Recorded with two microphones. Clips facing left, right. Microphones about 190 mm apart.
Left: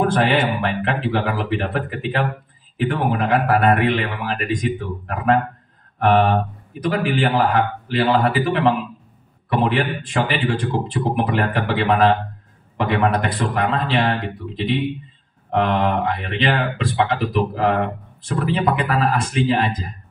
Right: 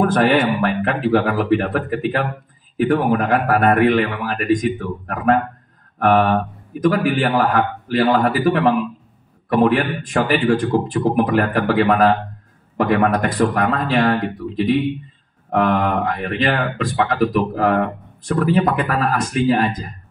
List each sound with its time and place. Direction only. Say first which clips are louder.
0.0 s a man's voice: right 3 dB; 45° right (ahead or behind)
9.5 s a man's voice: right 4 dB; 45° right (ahead or behind)